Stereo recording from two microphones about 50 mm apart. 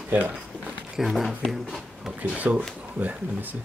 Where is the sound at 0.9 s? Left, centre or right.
Centre.